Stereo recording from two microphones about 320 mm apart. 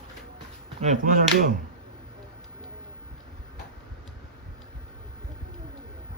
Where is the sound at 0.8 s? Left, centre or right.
Right.